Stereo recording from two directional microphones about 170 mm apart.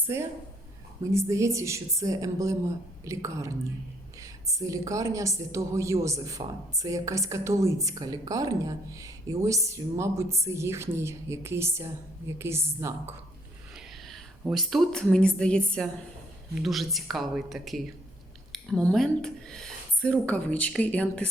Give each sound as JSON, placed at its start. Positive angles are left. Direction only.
{"t": 0.0, "sound": "a woman's voice", "side_deg": -15}
{"t": 13.7, "sound": "a woman's voice", "side_deg": 0}